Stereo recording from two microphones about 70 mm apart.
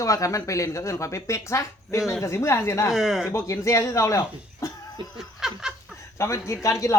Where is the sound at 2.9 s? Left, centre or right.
Centre.